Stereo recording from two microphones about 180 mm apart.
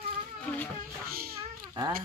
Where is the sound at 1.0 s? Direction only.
55° right (ahead or behind).